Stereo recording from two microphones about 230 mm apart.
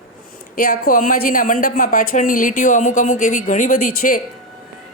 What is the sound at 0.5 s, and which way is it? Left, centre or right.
A woman's voice, left.